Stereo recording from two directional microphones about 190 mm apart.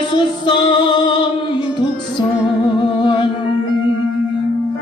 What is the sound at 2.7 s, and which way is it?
Music, 25° left (ahead or behind).